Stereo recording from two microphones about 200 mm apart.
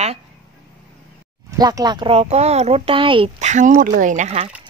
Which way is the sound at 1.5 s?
20° right (ahead or behind).